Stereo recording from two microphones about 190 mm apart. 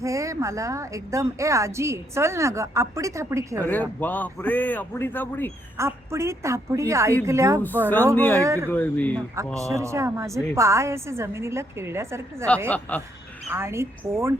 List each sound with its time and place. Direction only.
0.0 s a woman's voice: 15° right (ahead or behind)
3.7 s a man's voice: 10° left (ahead or behind)
5.7 s a woman's voice: 15° right (ahead or behind)
8.1 s a man's voice: 10° left (ahead or behind)
8.4 s a woman's voice: 15° right (ahead or behind)
8.7 s a man's voice: 10° left (ahead or behind)
9.6 s a woman's voice: 15° right (ahead or behind)
12.9 s a man's voice: 10° left (ahead or behind)
13.5 s a woman's voice: 15° right (ahead or behind)